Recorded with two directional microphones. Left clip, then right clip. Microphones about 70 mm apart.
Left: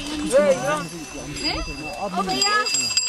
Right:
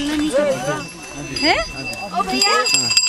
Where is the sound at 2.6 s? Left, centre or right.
Right.